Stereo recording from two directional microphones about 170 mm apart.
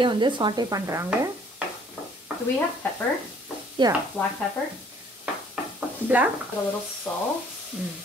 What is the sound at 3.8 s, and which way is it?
Speech, 25° right (ahead or behind).